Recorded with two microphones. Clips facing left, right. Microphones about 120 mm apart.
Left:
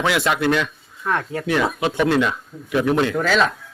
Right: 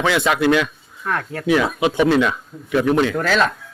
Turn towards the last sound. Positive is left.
turn(degrees=0)  # may be behind; listen again after turning